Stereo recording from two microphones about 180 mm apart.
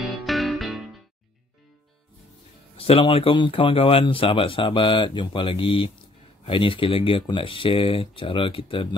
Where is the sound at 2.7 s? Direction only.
30° left (ahead or behind).